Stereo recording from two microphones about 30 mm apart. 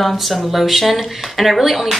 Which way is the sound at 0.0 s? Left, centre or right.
Centre.